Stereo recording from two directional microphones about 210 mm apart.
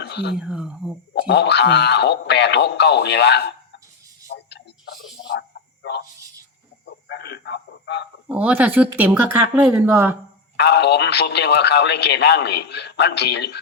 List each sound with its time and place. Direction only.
0.0 s whispering: 55° left (ahead or behind)
0.3 s speech: 5° right (ahead or behind)
1.1 s speech: 55° left (ahead or behind)
4.4 s a sound: 55° left (ahead or behind)
7.1 s a sound: 50° left (ahead or behind)
8.3 s speech: 5° right (ahead or behind)
10.6 s speech: 55° left (ahead or behind)